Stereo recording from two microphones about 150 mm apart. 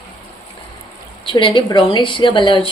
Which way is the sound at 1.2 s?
35° left (ahead or behind).